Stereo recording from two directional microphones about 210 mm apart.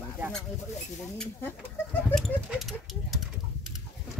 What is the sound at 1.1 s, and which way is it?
Speech, 10° left (ahead or behind).